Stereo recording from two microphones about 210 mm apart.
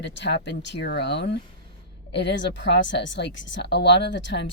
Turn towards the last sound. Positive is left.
turn(degrees=60)  # may be behind; listen again after turning